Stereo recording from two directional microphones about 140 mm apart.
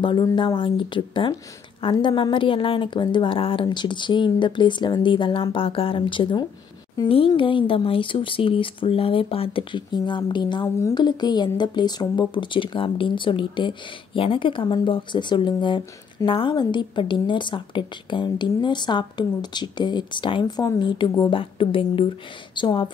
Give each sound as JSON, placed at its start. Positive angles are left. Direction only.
{"t": 0.0, "sound": "a woman's voice", "side_deg": 35}